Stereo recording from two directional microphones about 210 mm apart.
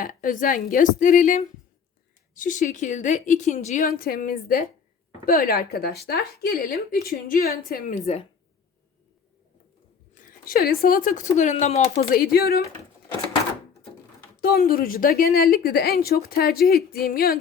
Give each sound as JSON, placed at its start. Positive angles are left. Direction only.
{"t": 0.0, "sound": "a woman's voice", "side_deg": 40}
{"t": 10.2, "sound": "a woman's voice", "side_deg": 40}
{"t": 14.4, "sound": "a woman's voice", "side_deg": 45}